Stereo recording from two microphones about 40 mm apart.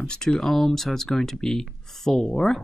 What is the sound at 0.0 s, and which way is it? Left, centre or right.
Speech, centre.